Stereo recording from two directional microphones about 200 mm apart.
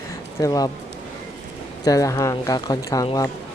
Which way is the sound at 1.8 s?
15° left (ahead or behind).